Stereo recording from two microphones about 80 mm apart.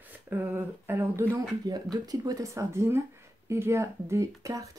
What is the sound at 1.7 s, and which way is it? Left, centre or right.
Speech, right.